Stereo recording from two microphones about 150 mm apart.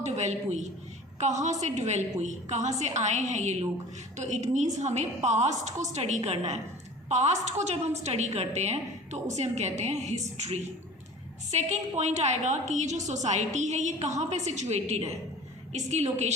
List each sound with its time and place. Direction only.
0.0 s a woman's voice: 50° right (ahead or behind)